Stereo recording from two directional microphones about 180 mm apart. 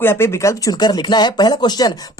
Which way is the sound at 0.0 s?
15° left (ahead or behind).